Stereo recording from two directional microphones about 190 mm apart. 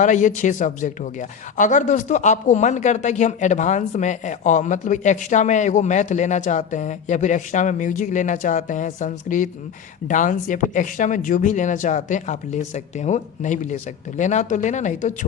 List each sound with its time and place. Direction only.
0.0 s speech: 40° left (ahead or behind)